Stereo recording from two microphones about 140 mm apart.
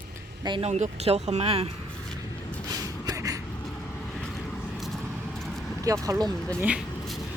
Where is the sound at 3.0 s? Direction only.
25° right (ahead or behind).